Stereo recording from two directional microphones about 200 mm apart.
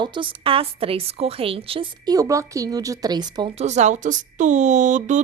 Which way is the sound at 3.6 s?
35° right (ahead or behind).